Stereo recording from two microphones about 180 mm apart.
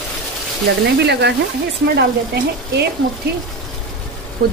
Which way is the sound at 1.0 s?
70° right (ahead or behind).